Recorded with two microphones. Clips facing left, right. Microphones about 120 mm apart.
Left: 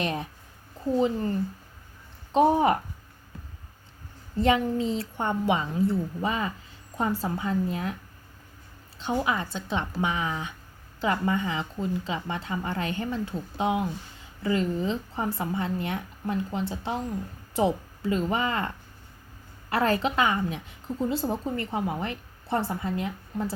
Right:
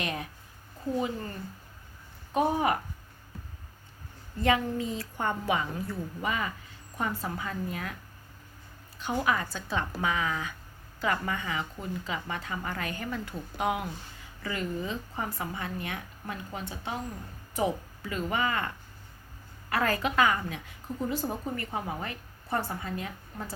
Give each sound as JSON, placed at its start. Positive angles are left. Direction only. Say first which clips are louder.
{"t": 0.0, "sound": "a woman's voice", "louder": "left 5 dB", "side_deg": 30}
{"t": 4.4, "sound": "a woman's voice", "louder": "left 4 dB", "side_deg": 25}
{"t": 9.1, "sound": "a woman's voice", "louder": "left 1 dB", "side_deg": 20}
{"t": 19.7, "sound": "a woman's voice", "louder": "left 3 dB", "side_deg": 25}